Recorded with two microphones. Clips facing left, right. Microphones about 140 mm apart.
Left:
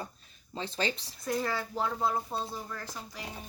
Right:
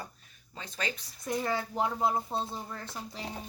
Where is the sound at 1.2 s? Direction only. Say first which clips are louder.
Even; 20° right (ahead or behind).